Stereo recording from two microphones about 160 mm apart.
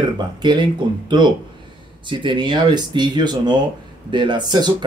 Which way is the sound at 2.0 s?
30° right (ahead or behind).